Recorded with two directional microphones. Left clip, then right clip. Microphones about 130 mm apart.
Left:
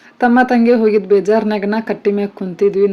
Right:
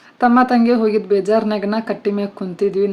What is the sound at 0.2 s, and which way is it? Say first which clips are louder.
Speech: left 1 dB; 20° left (ahead or behind).